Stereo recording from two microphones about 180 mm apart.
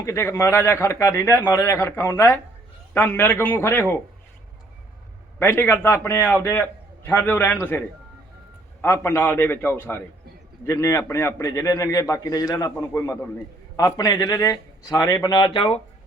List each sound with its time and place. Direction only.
0.0 s a man's voice: 15° left (ahead or behind)
5.4 s a man's voice: 10° left (ahead or behind)
8.8 s a man's voice: 15° left (ahead or behind); by 15.8 s 30° left (ahead or behind)